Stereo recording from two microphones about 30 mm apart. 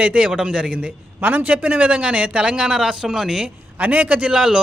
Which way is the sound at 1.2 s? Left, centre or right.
Right.